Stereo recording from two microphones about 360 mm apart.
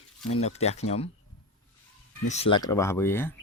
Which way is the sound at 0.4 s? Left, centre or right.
Centre.